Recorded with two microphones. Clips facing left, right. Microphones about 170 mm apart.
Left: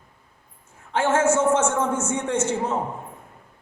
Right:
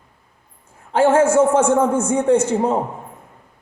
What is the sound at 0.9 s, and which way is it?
A man's voice, 35° right (ahead or behind).